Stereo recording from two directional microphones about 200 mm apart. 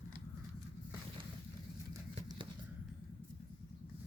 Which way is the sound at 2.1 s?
25° right (ahead or behind).